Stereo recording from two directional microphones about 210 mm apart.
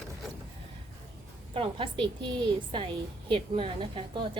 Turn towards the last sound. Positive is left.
turn(degrees=-25)  # may be behind; listen again after turning